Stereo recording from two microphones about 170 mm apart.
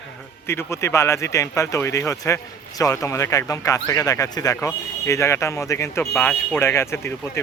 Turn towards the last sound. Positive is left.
turn(degrees=15)  # may be behind; listen again after turning